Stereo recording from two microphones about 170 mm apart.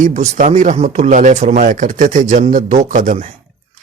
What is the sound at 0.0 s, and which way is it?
Speech, 45° right (ahead or behind).